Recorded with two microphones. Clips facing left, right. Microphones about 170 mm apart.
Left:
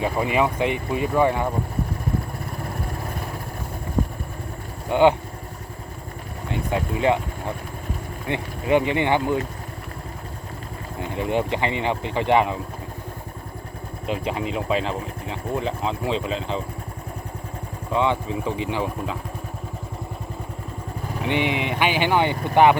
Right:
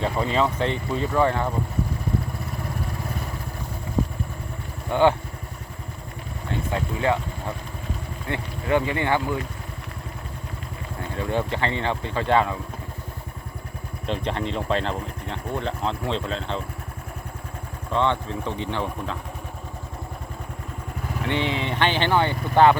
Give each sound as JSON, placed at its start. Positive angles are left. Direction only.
{"t": 0.0, "sound": "speech", "side_deg": 10}
{"t": 4.9, "sound": "speech", "side_deg": 15}
{"t": 6.5, "sound": "speech", "side_deg": 15}
{"t": 11.1, "sound": "speech", "side_deg": 15}
{"t": 14.1, "sound": "speech", "side_deg": 5}
{"t": 17.9, "sound": "speech", "side_deg": 10}
{"t": 21.2, "sound": "speech", "side_deg": 15}